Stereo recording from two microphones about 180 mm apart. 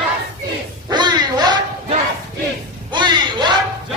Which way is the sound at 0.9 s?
25° right (ahead or behind).